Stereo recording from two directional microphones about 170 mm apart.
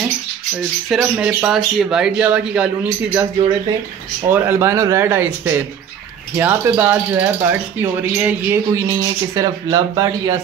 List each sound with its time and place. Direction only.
0.8 s speech: 5° right (ahead or behind)
4.3 s speech: 15° right (ahead or behind)